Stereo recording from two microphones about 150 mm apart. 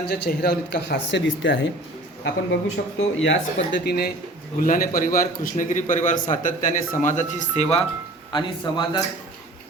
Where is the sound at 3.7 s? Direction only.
90° left.